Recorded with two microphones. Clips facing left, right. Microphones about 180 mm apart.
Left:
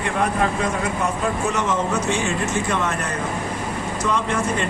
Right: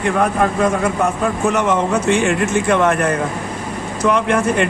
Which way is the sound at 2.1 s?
60° right (ahead or behind).